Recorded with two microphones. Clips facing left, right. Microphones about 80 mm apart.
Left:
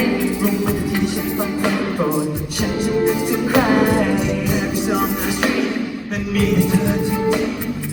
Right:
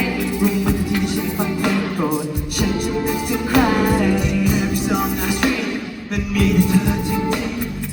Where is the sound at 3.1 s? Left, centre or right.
Left.